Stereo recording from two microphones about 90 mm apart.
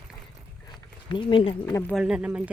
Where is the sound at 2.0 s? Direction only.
10° right (ahead or behind).